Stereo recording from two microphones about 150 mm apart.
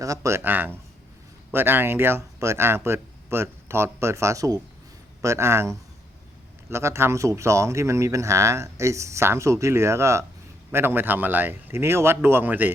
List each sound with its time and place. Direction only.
0.0 s speech: 20° right (ahead or behind)